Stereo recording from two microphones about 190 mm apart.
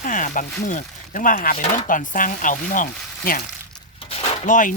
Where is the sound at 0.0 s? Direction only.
45° left (ahead or behind).